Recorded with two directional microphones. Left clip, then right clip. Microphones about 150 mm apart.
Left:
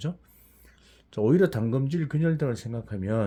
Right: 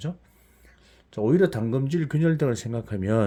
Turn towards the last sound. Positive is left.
turn(degrees=-30)  # may be behind; listen again after turning